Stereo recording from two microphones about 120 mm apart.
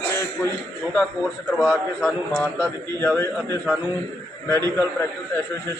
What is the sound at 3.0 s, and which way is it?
A man's voice, 20° left (ahead or behind).